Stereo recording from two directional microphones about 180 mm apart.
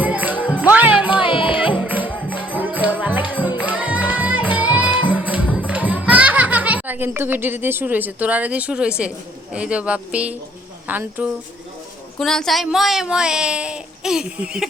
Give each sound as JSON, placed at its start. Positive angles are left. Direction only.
{"t": 0.0, "sound": "music", "side_deg": -10}
{"t": 0.3, "sound": "music", "side_deg": 10}
{"t": 0.6, "sound": "music", "side_deg": -10}
{"t": 1.2, "sound": "music", "side_deg": 30}
{"t": 1.7, "sound": "music", "side_deg": -10}
{"t": 9.0, "sound": "a woman's voice", "side_deg": -5}
{"t": 12.2, "sound": "speech", "side_deg": 0}